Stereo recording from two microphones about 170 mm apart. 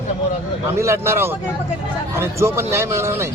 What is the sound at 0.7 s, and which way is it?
A man's voice, 15° right (ahead or behind).